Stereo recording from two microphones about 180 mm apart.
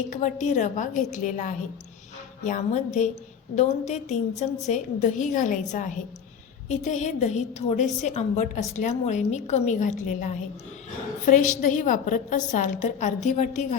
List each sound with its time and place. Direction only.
0.2 s a woman's voice: 45° left (ahead or behind)